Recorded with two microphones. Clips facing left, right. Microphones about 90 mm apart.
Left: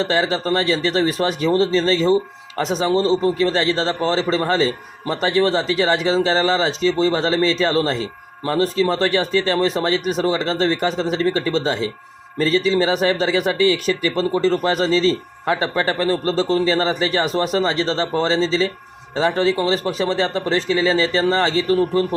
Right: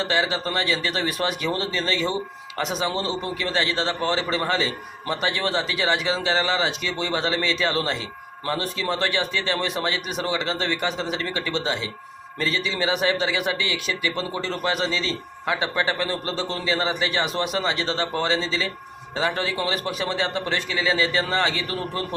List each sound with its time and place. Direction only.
0.0 s speech: 35° left (ahead or behind)